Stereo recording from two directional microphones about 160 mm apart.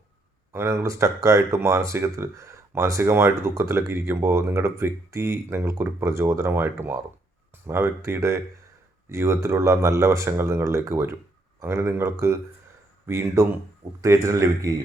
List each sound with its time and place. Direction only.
0.5 s speech: 15° right (ahead or behind)